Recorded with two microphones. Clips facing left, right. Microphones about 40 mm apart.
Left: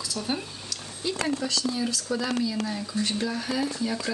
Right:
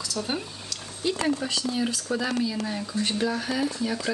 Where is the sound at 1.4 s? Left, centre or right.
Right.